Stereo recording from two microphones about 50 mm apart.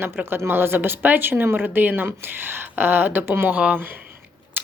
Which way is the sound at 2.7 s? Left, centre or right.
Right.